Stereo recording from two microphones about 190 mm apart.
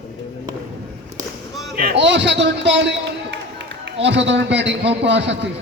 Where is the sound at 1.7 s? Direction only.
50° right (ahead or behind).